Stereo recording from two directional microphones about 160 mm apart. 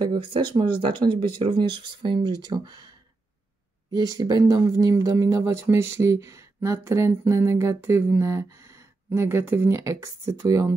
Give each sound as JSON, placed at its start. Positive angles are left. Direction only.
{"t": 0.1, "sound": "speech", "side_deg": -30}
{"t": 3.9, "sound": "speech", "side_deg": -25}